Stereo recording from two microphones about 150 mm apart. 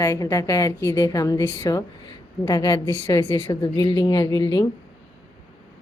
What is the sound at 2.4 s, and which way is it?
Speech, 30° left (ahead or behind).